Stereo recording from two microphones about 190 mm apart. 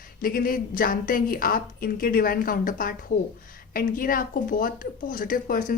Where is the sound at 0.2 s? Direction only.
50° left (ahead or behind).